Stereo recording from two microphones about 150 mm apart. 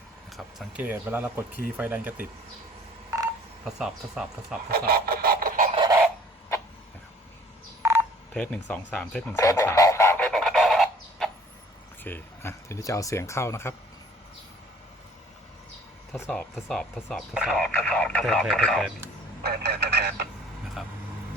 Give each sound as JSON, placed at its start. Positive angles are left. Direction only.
{"t": 0.3, "sound": "speech", "side_deg": 0}
{"t": 3.8, "sound": "speech", "side_deg": -5}
{"t": 4.7, "sound": "printer", "side_deg": -90}
{"t": 5.7, "sound": "a sound", "side_deg": -30}
{"t": 7.8, "sound": "telephone dialing", "side_deg": -15}
{"t": 8.3, "sound": "speech", "side_deg": 5}
{"t": 9.3, "sound": "frog", "side_deg": 20}
{"t": 12.0, "sound": "speech", "side_deg": 15}
{"t": 16.3, "sound": "speech", "side_deg": 5}
{"t": 19.4, "sound": "speech", "side_deg": -90}
{"t": 20.8, "sound": "speech", "side_deg": 0}